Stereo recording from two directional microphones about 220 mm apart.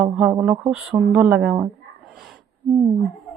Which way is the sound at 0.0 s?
10° right (ahead or behind).